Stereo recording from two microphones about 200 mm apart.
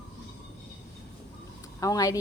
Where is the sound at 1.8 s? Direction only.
15° left (ahead or behind).